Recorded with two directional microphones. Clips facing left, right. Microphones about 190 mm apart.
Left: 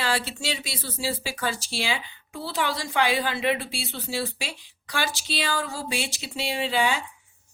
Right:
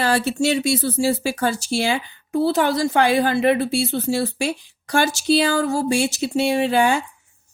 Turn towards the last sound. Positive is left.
turn(degrees=-50)  # may be behind; listen again after turning